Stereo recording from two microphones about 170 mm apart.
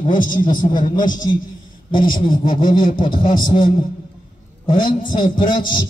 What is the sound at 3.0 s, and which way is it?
Speech, 30° left (ahead or behind).